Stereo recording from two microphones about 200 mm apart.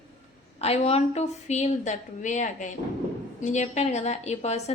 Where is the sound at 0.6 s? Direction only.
30° left (ahead or behind).